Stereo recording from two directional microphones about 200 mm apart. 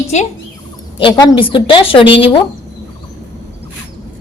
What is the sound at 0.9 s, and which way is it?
A woman's voice, 20° left (ahead or behind).